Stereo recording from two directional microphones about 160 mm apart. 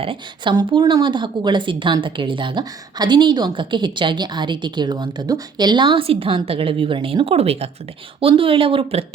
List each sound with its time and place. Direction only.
0.0 s a woman's voice: 30° right (ahead or behind)